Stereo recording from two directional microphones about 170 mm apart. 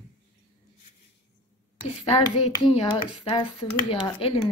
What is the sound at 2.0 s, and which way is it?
Speech, 40° left (ahead or behind).